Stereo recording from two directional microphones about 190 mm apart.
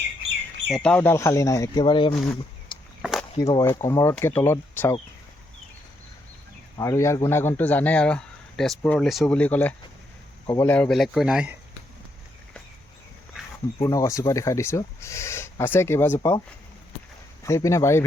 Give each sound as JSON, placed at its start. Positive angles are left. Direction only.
{"t": 0.7, "sound": "speech", "side_deg": 5}
{"t": 3.0, "sound": "chop", "side_deg": 0}
{"t": 3.3, "sound": "speech", "side_deg": 20}
{"t": 6.7, "sound": "speech", "side_deg": 15}
{"t": 10.8, "sound": "speech", "side_deg": 0}
{"t": 13.8, "sound": "speech", "side_deg": 15}
{"t": 17.4, "sound": "speech", "side_deg": 15}